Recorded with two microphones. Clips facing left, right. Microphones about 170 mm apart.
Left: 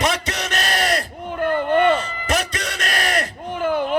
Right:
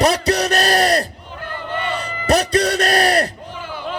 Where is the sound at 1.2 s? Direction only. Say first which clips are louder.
Left 9 dB; 55° left (ahead or behind).